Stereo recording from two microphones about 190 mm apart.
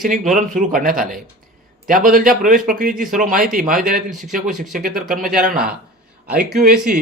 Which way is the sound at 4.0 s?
Centre (ahead or behind).